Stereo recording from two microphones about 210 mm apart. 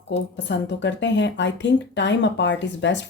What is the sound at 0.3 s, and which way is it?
Speech, 55° left (ahead or behind).